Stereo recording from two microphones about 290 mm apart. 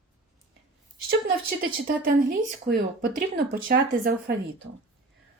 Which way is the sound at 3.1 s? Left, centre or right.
Right.